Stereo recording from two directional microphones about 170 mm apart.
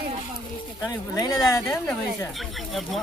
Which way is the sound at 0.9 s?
20° left (ahead or behind).